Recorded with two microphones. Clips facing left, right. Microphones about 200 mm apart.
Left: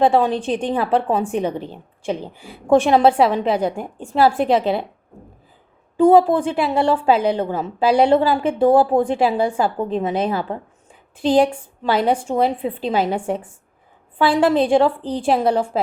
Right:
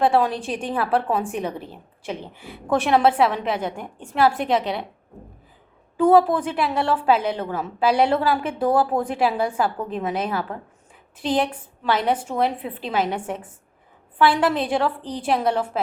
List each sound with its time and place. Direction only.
0.0 s a woman's voice: 25° left (ahead or behind)
6.0 s a woman's voice: 30° left (ahead or behind)